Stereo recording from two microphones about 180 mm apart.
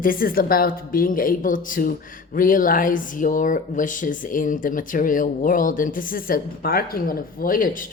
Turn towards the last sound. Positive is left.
turn(degrees=50)  # may be behind; listen again after turning